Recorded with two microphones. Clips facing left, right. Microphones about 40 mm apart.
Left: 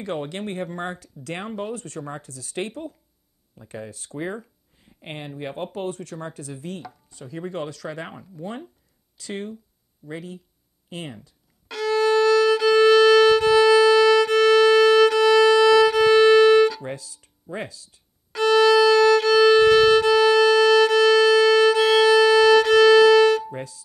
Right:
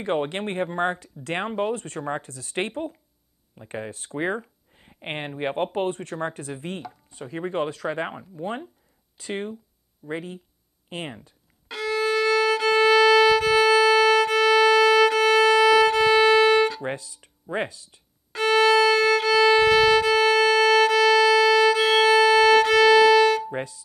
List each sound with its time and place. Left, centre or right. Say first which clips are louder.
0.0 s speech: right 3 dB; right
8.1 s speech: right 3 dB; centre
11.6 s violin: left 4 dB; centre
16.8 s music: right 3 dB; right
18.3 s violin: left 2 dB; centre
23.5 s speech: right 3 dB; right